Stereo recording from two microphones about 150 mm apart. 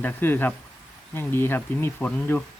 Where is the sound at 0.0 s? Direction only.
15° left (ahead or behind).